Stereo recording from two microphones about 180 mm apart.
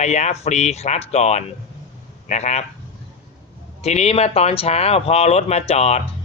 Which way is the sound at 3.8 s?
35° left (ahead or behind).